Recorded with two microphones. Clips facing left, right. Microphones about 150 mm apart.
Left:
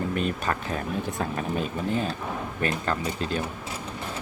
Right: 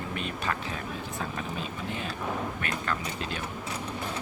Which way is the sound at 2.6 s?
35° left (ahead or behind).